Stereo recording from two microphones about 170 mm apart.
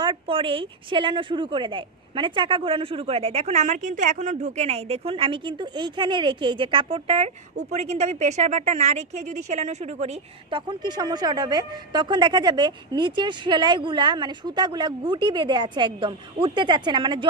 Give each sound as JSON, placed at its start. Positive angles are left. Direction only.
{"t": 0.0, "sound": "a woman's voice", "side_deg": -30}